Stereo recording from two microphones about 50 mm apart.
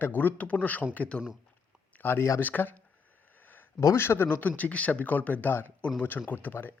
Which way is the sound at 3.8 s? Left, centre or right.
Left.